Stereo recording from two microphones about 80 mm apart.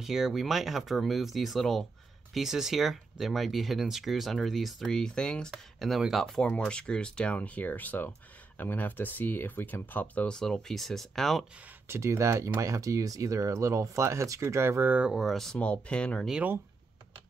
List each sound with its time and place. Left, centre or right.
0.0 s speech: centre
5.5 s speech: centre
11.9 s speech: right
14.9 s speech: centre
15.1 s speech: centre